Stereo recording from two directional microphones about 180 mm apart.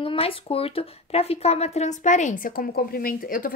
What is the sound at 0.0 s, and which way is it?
A woman's voice, 30° left (ahead or behind).